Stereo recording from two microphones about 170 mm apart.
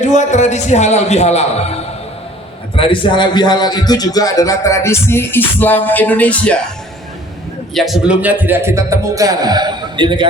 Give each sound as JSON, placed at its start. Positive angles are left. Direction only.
{"t": 0.0, "sound": "a man's voice", "side_deg": 45}
{"t": 7.7, "sound": "a man's voice", "side_deg": 0}